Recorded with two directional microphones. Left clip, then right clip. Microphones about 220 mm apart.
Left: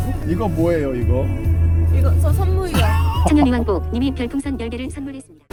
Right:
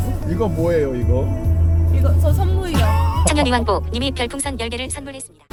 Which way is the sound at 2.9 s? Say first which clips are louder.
Right 2 dB; 15° left (ahead or behind).